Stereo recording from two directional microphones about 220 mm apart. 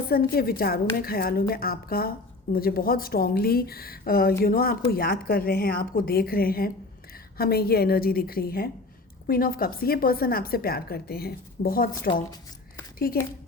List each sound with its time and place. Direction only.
0.1 s a woman's voice: 45° left (ahead or behind)